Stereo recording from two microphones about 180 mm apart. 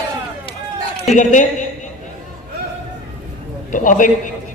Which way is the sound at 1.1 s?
45° left (ahead or behind).